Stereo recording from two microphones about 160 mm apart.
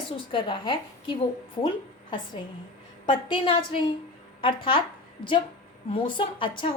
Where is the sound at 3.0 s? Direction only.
30° left (ahead or behind).